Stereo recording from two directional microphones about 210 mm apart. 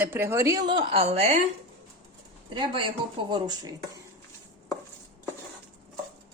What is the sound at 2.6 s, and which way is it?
Speech, 25° right (ahead or behind).